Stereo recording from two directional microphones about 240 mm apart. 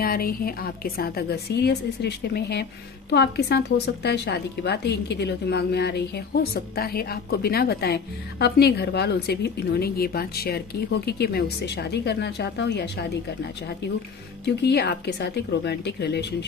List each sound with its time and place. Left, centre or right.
0.0 s a woman's voice: left
14.4 s a woman's voice: left